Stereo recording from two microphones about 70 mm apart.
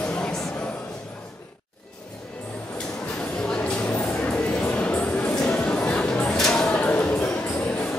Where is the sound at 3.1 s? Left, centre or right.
Centre.